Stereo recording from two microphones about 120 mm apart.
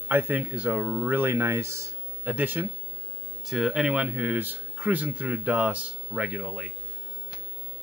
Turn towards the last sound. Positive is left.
turn(degrees=-10)  # may be behind; listen again after turning